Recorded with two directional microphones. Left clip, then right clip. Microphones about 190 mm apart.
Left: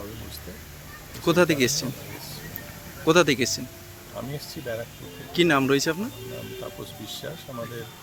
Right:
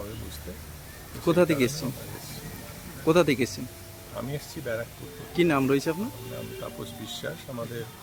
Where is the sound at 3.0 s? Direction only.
Centre (ahead or behind).